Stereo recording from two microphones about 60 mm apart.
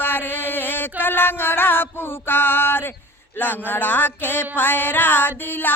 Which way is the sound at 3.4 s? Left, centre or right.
Left.